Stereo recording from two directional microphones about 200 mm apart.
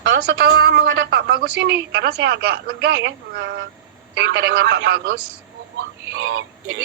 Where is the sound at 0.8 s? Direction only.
65° right (ahead or behind).